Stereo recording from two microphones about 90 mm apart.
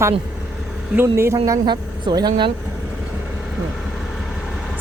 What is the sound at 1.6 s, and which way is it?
Speech, 55° right (ahead or behind).